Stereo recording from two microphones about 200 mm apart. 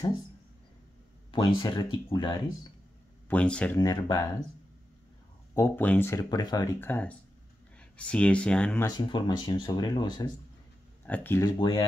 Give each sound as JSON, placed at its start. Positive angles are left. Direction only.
{"t": 1.3, "sound": "speech", "side_deg": 20}
{"t": 3.3, "sound": "speech", "side_deg": 5}
{"t": 5.5, "sound": "speech", "side_deg": 10}
{"t": 8.8, "sound": "speech", "side_deg": 20}
{"t": 11.1, "sound": "speech", "side_deg": 10}
{"t": 11.5, "sound": "speech", "side_deg": 25}